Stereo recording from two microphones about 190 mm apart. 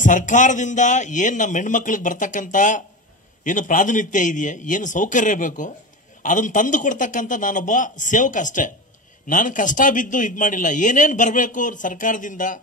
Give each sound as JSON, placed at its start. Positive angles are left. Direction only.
{"t": 0.0, "sound": "a man's voice", "side_deg": 40}